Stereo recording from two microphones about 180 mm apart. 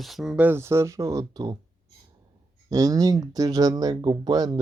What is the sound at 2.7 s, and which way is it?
Speech, 20° right (ahead or behind).